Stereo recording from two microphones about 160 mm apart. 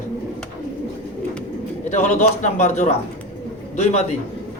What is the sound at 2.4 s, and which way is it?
Speech, 50° left (ahead or behind).